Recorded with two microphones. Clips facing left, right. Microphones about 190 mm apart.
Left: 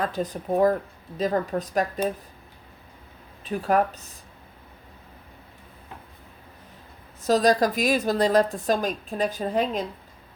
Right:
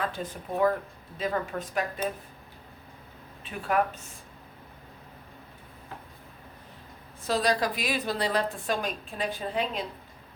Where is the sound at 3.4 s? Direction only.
40° left (ahead or behind).